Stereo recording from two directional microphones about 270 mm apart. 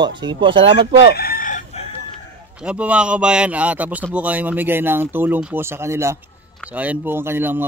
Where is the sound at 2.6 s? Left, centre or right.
Centre.